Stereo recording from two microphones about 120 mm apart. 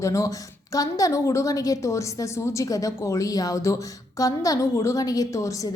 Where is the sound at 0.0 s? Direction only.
25° left (ahead or behind).